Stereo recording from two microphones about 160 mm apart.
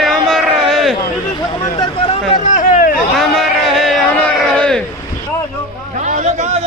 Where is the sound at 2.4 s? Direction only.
55° left (ahead or behind).